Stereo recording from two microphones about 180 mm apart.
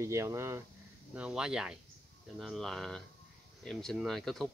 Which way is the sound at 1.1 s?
5° right (ahead or behind).